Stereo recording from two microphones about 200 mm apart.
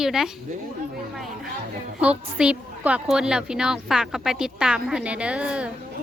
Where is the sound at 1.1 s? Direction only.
Centre (ahead or behind).